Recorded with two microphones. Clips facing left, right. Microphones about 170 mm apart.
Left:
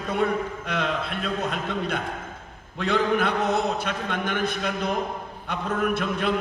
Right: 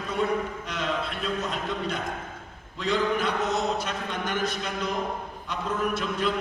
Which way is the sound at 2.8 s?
60° left (ahead or behind).